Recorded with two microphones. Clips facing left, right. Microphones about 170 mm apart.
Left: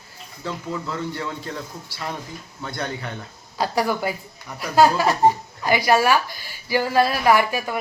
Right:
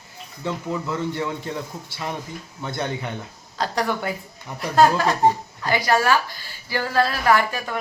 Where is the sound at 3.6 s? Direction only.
5° left (ahead or behind).